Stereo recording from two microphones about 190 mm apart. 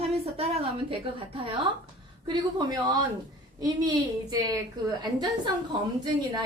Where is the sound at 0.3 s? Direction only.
30° right (ahead or behind).